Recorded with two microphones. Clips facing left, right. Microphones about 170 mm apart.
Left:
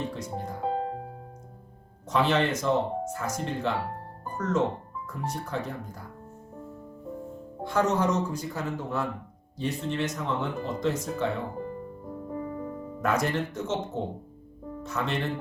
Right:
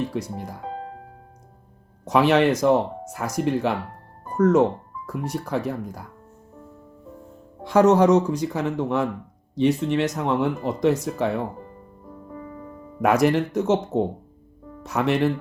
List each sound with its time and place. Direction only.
0.1 s speech: 85° right
0.6 s music: 35° left (ahead or behind)
2.0 s speech: 70° right (ahead or behind)
7.7 s speech: 80° right
13.0 s speech: 75° right (ahead or behind)